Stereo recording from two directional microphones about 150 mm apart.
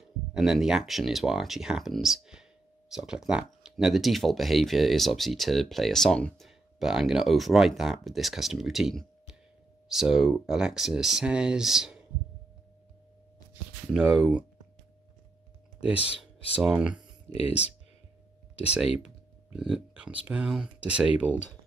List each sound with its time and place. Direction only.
0.0 s speech: 5° right (ahead or behind)
15.8 s speech: 10° right (ahead or behind)
17.3 s speech: 45° left (ahead or behind)
18.6 s speech: 5° right (ahead or behind)